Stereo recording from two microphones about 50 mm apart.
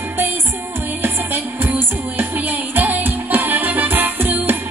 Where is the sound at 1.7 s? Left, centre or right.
Right.